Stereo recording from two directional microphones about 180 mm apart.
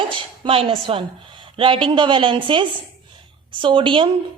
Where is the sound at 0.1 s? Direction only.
30° right (ahead or behind).